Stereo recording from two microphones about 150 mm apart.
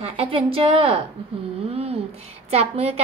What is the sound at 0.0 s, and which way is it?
A woman's voice, 40° right (ahead or behind).